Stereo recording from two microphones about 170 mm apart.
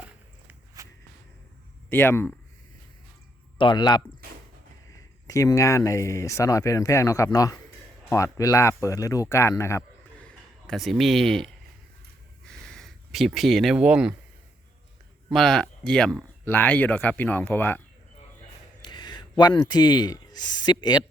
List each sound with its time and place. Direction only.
0.8 s a sound: 20° right (ahead or behind)
1.9 s speech: 15° left (ahead or behind)
3.6 s speech: 25° left (ahead or behind); by 11.5 s centre (ahead or behind)
12.5 s a sound: 5° left (ahead or behind)
15.3 s speech: centre (ahead or behind)
18.8 s speech: 25° left (ahead or behind)